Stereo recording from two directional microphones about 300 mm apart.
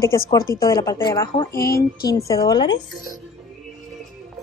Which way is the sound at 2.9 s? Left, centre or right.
Centre.